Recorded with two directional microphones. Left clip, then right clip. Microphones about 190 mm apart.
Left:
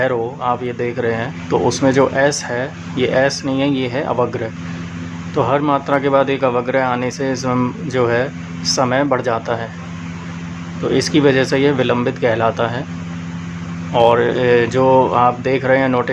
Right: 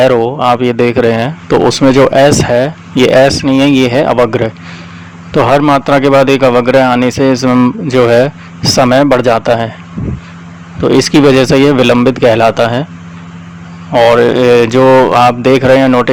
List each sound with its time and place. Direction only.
0.0 s speech: 45° right (ahead or behind)
10.8 s speech: 40° right (ahead or behind)
13.9 s speech: 40° right (ahead or behind)